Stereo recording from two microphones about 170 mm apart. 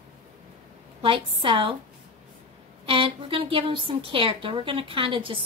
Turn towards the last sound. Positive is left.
turn(degrees=-30)  # may be behind; listen again after turning